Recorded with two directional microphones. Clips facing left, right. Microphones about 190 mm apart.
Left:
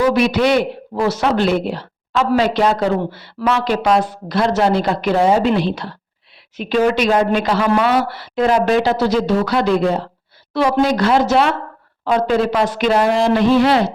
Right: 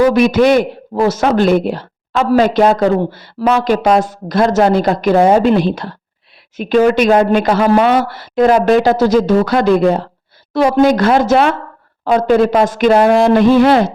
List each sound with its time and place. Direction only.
0.0 s a man's voice: 45° right (ahead or behind)